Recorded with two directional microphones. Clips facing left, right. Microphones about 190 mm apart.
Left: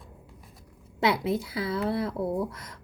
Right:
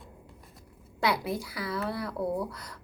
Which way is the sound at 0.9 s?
25° left (ahead or behind).